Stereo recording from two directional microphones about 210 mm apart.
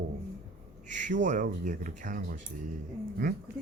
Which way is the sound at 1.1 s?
35° right (ahead or behind).